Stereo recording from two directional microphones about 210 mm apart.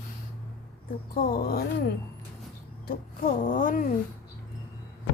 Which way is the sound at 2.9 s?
45° left (ahead or behind).